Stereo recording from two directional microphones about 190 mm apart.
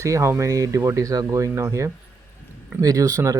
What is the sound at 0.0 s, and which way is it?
Speech, 15° right (ahead or behind).